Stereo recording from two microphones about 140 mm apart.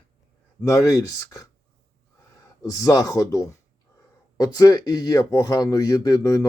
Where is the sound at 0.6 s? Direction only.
25° left (ahead or behind).